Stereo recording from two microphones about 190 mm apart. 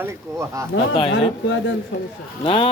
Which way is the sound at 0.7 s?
90° left.